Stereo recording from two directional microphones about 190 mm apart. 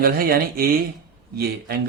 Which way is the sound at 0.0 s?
50° right (ahead or behind).